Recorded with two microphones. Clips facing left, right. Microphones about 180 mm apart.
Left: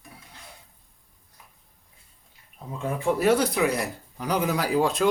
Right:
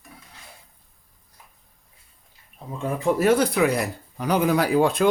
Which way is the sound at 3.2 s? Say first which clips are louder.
Right 2 dB; 60° right (ahead or behind).